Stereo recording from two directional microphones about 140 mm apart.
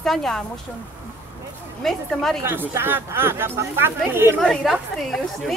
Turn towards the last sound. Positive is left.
turn(degrees=0)  # may be behind; listen again after turning